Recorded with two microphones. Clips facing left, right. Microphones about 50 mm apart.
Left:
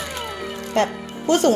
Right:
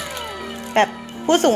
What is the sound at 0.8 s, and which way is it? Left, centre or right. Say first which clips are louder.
Speech: right 3 dB; right.